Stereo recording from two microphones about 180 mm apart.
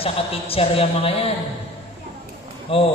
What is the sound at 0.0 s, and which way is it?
A man's voice, 30° left (ahead or behind).